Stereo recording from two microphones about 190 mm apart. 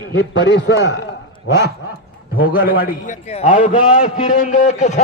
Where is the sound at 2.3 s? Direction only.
50° left (ahead or behind).